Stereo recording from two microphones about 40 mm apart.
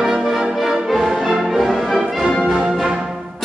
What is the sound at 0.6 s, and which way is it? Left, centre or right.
Music, centre.